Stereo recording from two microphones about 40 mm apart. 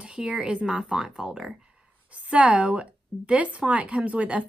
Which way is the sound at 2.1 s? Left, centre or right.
Right.